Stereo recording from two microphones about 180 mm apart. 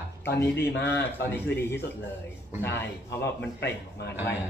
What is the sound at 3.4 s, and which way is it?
Speech, 70° left (ahead or behind).